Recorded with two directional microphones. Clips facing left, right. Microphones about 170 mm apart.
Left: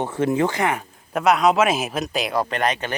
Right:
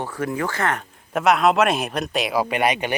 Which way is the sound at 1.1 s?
Centre (ahead or behind).